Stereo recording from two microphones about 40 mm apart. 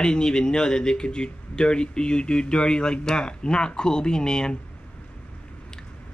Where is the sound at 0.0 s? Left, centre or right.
Centre.